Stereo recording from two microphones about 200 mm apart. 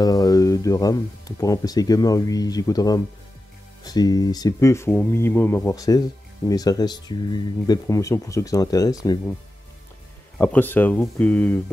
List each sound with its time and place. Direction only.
0.0 s speech: 20° left (ahead or behind)
10.4 s speech: 10° left (ahead or behind)